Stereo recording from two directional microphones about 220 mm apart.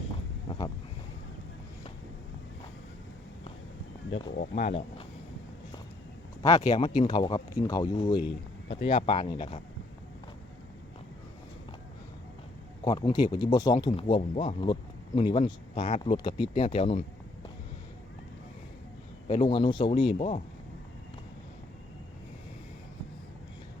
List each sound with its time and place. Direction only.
4.4 s speech: 30° left (ahead or behind)
6.4 s speech: 30° left (ahead or behind)
12.8 s speech: 20° left (ahead or behind)
19.3 s speech: 25° left (ahead or behind)